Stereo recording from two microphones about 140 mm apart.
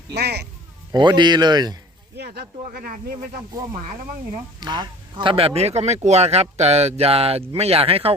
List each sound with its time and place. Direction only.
0.9 s speech: 30° right (ahead or behind)
2.7 s speech: 85° right
4.6 s speech: 30° right (ahead or behind)